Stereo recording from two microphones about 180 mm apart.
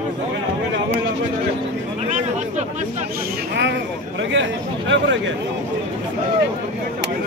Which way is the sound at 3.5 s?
80° right.